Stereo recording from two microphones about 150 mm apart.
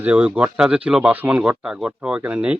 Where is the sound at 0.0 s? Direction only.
10° right (ahead or behind).